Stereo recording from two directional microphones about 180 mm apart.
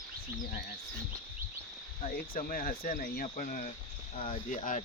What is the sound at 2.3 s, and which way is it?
Speech, 50° left (ahead or behind).